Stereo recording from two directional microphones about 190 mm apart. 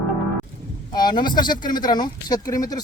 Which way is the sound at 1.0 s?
20° left (ahead or behind).